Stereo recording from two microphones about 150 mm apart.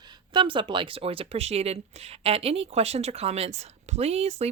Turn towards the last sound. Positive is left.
turn(degrees=-45)  # may be behind; listen again after turning